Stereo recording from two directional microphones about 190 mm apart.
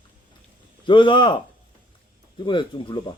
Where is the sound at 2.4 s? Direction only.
25° left (ahead or behind).